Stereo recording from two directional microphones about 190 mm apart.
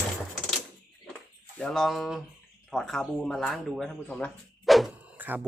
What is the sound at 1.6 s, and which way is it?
Speech, centre (ahead or behind).